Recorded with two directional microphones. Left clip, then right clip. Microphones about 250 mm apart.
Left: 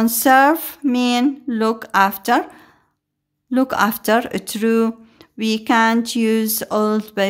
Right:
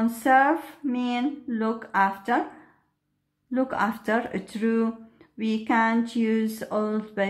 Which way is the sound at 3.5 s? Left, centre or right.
Left.